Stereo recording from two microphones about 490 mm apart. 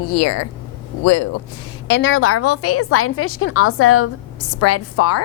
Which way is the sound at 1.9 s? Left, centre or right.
Left.